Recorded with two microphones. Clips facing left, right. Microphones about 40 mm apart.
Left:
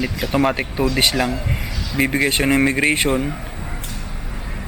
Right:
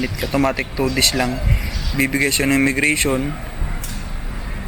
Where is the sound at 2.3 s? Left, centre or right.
Left.